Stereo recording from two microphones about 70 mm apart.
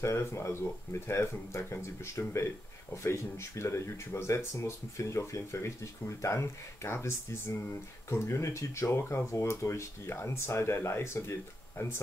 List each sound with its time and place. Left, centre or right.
0.0 s speech: left